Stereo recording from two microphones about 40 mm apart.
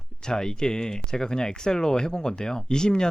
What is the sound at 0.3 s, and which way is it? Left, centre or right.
Speech, centre.